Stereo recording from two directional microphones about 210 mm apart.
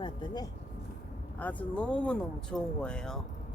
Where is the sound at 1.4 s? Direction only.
5° left (ahead or behind).